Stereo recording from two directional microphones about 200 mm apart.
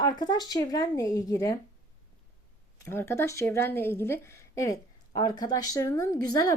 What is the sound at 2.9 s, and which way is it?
A woman's voice, 10° left (ahead or behind).